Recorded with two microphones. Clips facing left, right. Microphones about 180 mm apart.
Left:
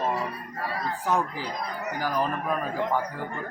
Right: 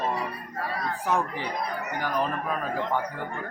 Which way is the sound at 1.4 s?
60° right (ahead or behind).